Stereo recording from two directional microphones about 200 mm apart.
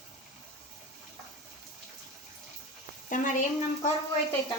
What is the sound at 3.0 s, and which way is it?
Speech, 40° left (ahead or behind).